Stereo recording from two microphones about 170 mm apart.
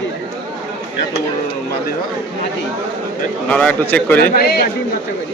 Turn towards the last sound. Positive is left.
turn(degrees=65)  # may be behind; listen again after turning